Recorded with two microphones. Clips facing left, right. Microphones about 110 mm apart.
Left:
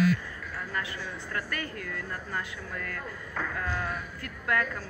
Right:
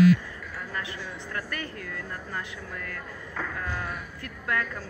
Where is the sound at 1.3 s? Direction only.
25° right (ahead or behind).